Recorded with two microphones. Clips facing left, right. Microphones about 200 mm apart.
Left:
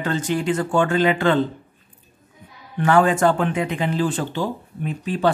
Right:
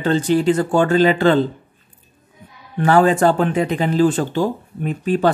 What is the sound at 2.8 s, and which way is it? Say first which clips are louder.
Speech: right 3 dB; 35° right (ahead or behind).